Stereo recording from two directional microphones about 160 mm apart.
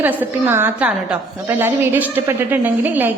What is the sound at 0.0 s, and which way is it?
A woman's voice, 10° right (ahead or behind).